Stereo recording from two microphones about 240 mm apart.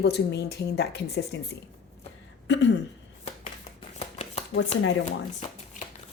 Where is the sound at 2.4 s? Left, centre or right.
Left.